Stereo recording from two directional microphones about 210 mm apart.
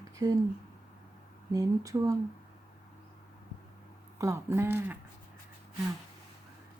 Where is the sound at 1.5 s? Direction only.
15° right (ahead or behind).